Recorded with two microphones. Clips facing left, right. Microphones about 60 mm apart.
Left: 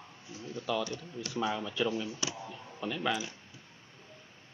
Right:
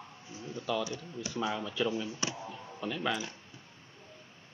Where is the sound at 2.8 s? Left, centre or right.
Centre.